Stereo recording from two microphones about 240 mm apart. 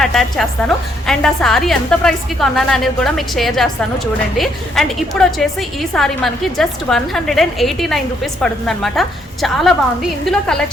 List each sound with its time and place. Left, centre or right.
0.0 s a woman's voice: centre